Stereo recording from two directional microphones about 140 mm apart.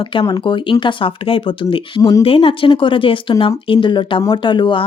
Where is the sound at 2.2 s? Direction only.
40° left (ahead or behind).